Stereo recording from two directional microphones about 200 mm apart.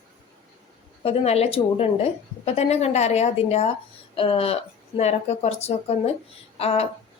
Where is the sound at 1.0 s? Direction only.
30° left (ahead or behind).